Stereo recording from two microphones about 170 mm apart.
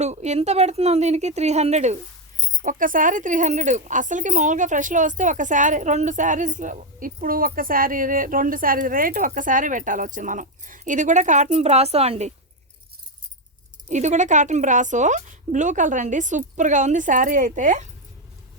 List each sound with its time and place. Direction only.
0.0 s speech: 40° right (ahead or behind)
13.8 s speech: 45° right (ahead or behind)